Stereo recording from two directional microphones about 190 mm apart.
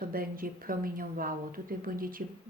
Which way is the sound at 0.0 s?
50° right (ahead or behind).